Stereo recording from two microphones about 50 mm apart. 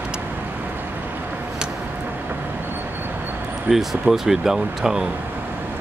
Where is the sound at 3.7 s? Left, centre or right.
Centre.